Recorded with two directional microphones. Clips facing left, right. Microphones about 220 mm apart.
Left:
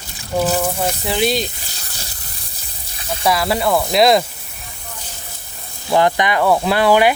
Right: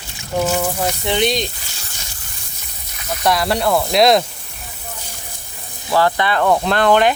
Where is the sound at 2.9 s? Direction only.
30° left (ahead or behind).